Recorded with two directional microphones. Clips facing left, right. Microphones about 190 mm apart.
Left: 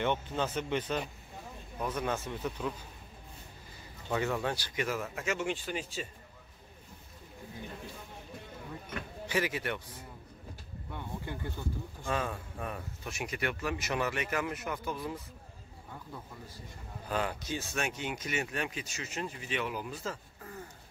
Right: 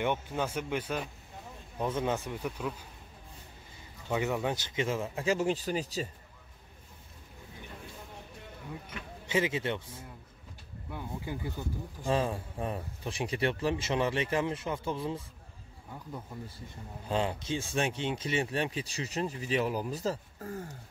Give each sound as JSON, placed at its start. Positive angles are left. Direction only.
{"t": 0.0, "sound": "speech", "side_deg": -10}
{"t": 1.8, "sound": "a man's voice", "side_deg": -25}
{"t": 4.1, "sound": "a man's voice", "side_deg": -15}
{"t": 9.3, "sound": "a man's voice", "side_deg": -25}
{"t": 10.9, "sound": "speech", "side_deg": -10}
{"t": 12.1, "sound": "a man's voice", "side_deg": -30}
{"t": 17.1, "sound": "speech", "side_deg": -25}